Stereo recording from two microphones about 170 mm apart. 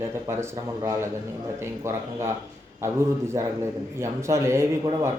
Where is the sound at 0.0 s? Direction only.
15° right (ahead or behind).